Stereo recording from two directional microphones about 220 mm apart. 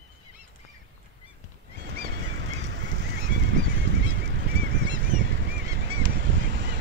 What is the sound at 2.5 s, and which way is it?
Goose, 55° right (ahead or behind).